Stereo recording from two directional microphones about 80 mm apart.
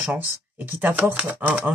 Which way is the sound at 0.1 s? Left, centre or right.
Centre.